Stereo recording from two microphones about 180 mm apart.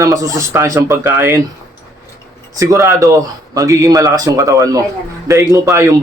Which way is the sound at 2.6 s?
15° right (ahead or behind).